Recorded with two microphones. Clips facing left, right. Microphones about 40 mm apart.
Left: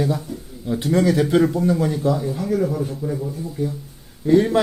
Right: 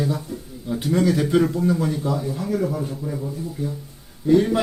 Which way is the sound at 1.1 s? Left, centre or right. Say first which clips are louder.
Left 2 dB; left.